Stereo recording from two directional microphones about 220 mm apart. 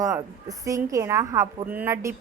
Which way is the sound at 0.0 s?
15° right (ahead or behind).